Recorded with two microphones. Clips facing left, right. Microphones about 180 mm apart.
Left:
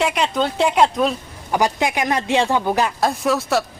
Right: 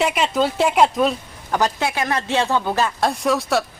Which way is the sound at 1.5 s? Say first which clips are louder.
Left 2 dB; 15° left (ahead or behind).